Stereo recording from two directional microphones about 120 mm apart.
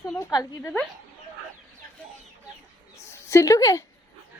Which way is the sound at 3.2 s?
25° left (ahead or behind).